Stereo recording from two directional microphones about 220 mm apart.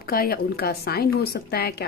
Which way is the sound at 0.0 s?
40° left (ahead or behind).